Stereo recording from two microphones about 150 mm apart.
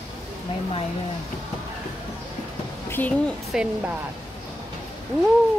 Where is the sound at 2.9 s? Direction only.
10° left (ahead or behind).